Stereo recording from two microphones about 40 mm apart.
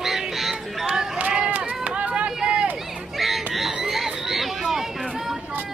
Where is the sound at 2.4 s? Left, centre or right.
Right.